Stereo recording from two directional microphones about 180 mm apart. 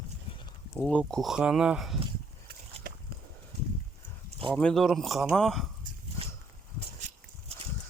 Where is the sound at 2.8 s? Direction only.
55° right (ahead or behind).